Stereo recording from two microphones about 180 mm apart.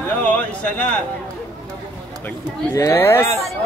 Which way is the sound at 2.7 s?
15° left (ahead or behind).